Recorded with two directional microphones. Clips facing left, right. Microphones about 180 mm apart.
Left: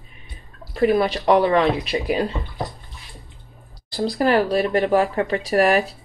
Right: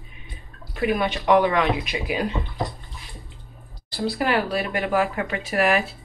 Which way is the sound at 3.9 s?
35° left (ahead or behind).